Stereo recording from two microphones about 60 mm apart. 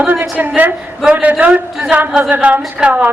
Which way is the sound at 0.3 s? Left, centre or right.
Right.